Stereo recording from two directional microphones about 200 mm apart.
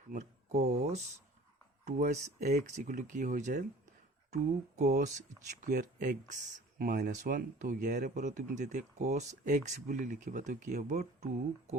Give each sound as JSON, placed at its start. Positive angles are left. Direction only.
{"t": 0.1, "sound": "speech", "side_deg": -35}
{"t": 4.8, "sound": "speech", "side_deg": -35}